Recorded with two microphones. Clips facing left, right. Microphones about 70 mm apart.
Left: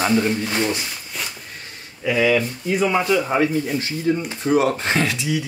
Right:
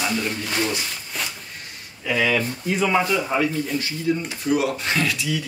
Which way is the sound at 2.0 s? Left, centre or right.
Centre.